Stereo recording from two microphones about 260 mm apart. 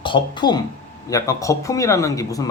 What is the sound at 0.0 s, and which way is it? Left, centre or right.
Speech, centre.